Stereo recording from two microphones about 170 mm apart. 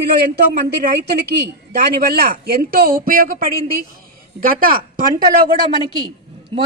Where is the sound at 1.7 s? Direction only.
65° right (ahead or behind).